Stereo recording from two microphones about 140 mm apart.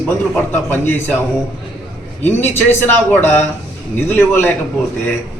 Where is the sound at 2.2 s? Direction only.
15° left (ahead or behind).